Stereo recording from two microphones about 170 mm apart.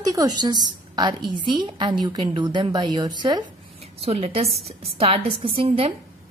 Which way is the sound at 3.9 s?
35° right (ahead or behind).